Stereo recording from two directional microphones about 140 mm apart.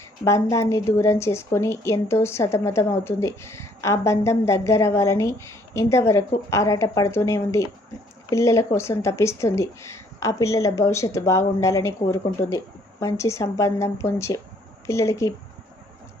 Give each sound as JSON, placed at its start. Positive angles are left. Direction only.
{"t": 0.3, "sound": "a woman's voice", "side_deg": 20}